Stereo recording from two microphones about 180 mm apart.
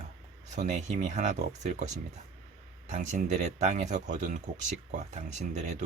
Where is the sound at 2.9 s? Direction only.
40° right (ahead or behind).